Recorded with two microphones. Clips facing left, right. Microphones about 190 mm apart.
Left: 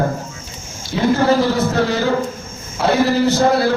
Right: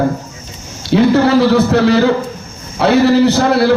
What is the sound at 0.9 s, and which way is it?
A man's voice, 70° right (ahead or behind).